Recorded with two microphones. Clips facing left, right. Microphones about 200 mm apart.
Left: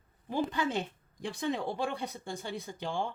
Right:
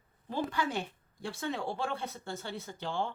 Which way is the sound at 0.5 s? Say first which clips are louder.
Left 2 dB; 20° left (ahead or behind).